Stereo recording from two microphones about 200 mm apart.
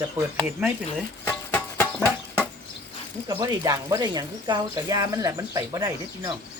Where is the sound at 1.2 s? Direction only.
10° left (ahead or behind).